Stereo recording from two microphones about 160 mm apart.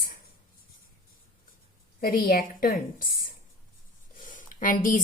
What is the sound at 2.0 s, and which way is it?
A woman's voice, 65° left (ahead or behind).